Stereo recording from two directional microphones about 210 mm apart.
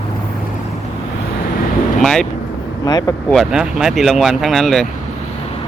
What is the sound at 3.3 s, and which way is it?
Speech, 5° right (ahead or behind).